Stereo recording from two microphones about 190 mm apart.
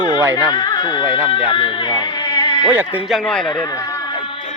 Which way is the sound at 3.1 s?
5° left (ahead or behind).